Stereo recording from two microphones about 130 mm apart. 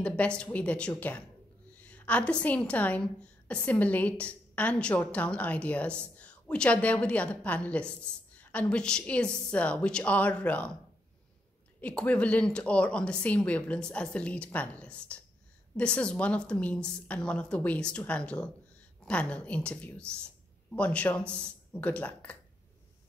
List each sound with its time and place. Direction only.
0.0 s a woman's voice: 10° left (ahead or behind)
11.8 s a woman's voice: 10° left (ahead or behind)